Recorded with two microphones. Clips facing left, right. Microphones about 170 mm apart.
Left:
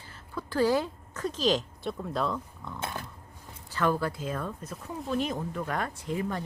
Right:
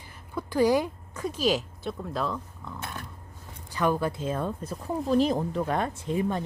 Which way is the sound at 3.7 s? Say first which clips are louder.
Right 2 dB; 15° right (ahead or behind).